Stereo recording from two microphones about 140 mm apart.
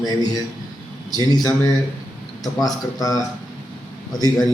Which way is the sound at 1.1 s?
30° left (ahead or behind).